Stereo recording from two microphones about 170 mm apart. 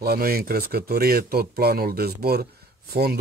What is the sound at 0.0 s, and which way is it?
Speech, 65° right (ahead or behind).